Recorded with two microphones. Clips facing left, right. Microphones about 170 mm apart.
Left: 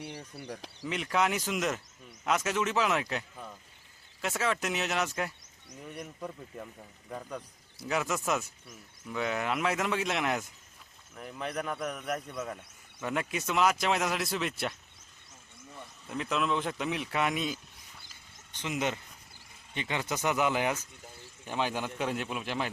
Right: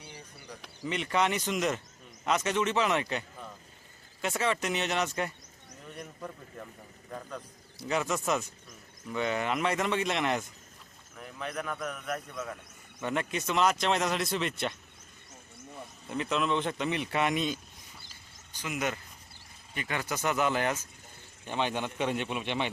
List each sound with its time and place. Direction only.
0.9 s speech: centre (ahead or behind)
16.0 s speech: centre (ahead or behind)
18.5 s speech: 25° left (ahead or behind); by 22.7 s centre (ahead or behind)